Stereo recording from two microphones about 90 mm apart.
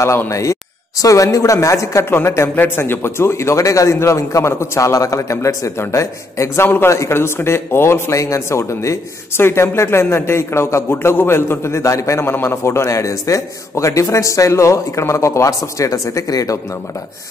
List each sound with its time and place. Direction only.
0.0 s a man's voice: 30° left (ahead or behind)